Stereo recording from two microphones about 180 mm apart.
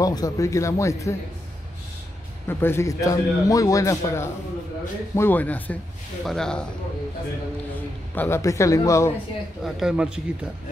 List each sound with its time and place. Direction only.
0.0 s a man's voice: 20° left (ahead or behind)
2.4 s a man's voice: 15° left (ahead or behind)
8.1 s a man's voice: 10° left (ahead or behind)
9.8 s speech: 5° right (ahead or behind)